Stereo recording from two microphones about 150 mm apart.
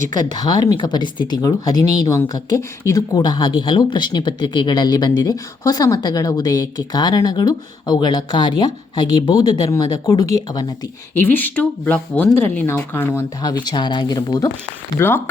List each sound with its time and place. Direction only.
0.3 s speech: 30° left (ahead or behind)
11.1 s speech: 15° left (ahead or behind)
13.4 s speech: 25° left (ahead or behind)
14.9 s speech: 15° left (ahead or behind)